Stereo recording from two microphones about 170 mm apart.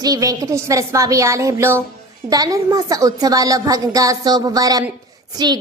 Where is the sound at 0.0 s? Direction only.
20° right (ahead or behind).